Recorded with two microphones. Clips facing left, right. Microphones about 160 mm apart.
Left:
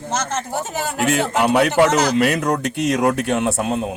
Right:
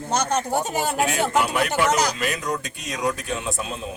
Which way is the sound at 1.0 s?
85° left.